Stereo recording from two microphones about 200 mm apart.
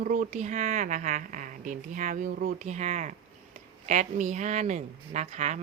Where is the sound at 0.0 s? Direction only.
40° right (ahead or behind).